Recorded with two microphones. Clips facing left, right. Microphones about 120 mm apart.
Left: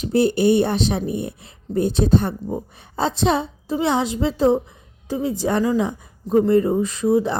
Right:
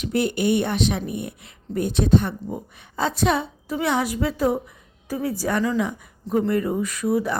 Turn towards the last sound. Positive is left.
turn(degrees=25)  # may be behind; listen again after turning